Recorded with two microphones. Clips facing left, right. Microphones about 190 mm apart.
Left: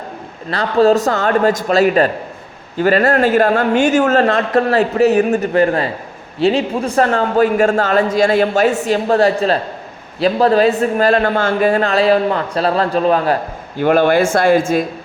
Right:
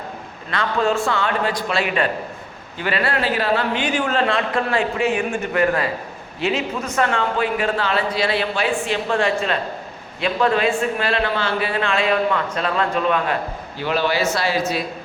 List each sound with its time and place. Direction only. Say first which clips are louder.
0.5 s a man's voice: left 8 dB; 35° left (ahead or behind)